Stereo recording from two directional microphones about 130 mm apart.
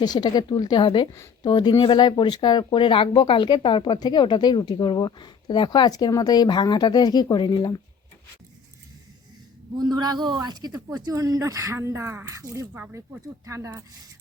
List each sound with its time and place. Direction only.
0.0 s speech: 30° left (ahead or behind)
9.7 s a man's voice: 30° right (ahead or behind)
12.7 s speech: 15° right (ahead or behind)